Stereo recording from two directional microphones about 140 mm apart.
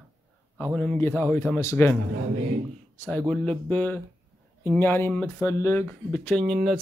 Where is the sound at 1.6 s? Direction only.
20° left (ahead or behind).